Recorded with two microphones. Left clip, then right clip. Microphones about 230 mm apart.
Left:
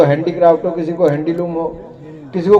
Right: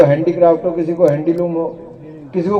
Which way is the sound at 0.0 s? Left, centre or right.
Left.